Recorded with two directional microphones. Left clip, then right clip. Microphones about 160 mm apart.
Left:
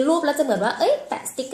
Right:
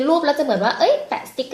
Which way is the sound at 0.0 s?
20° left (ahead or behind).